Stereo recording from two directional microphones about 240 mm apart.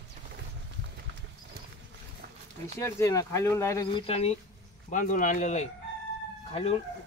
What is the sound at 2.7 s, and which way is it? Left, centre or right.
Speech, centre.